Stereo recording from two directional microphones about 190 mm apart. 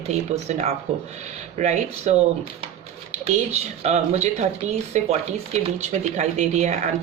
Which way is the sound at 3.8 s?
35° right (ahead or behind).